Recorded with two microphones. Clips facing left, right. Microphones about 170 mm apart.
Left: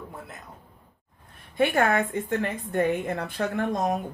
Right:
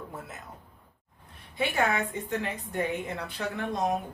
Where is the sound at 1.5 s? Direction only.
50° left (ahead or behind).